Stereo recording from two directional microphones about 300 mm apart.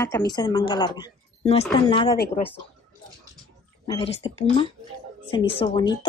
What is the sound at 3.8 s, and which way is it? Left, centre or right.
Speech, centre.